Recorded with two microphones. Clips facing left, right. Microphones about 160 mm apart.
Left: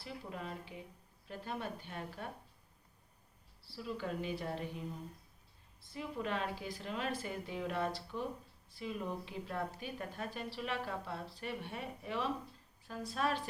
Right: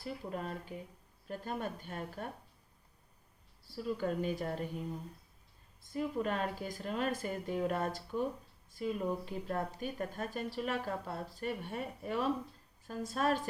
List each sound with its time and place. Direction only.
0.0 s a woman's voice: 45° right (ahead or behind)
3.6 s a woman's voice: 45° right (ahead or behind)
5.8 s a woman's voice: 45° right (ahead or behind)